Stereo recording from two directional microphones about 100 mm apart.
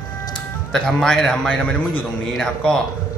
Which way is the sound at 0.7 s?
5° left (ahead or behind).